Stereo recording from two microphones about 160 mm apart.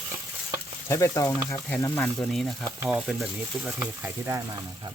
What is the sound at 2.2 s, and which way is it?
Speech, centre (ahead or behind).